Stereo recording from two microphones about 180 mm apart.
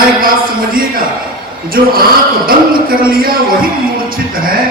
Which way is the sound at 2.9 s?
55° right (ahead or behind).